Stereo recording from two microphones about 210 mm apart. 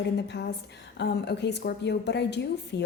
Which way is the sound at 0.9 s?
55° left (ahead or behind).